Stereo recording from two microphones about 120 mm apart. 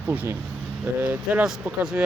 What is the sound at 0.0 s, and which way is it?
Speech, 15° right (ahead or behind).